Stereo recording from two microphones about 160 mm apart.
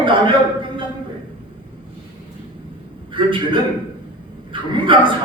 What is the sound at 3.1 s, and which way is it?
Speech, 30° right (ahead or behind).